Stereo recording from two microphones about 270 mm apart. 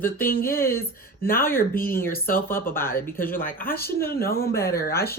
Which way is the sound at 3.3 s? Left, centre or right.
Left.